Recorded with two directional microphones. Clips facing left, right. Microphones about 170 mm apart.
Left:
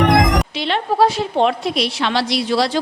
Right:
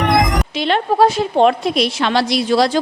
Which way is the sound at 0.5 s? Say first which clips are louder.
Right 3 dB; 50° right (ahead or behind).